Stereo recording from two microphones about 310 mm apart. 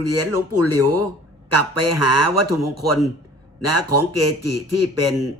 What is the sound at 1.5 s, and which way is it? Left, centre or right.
A man's voice, right.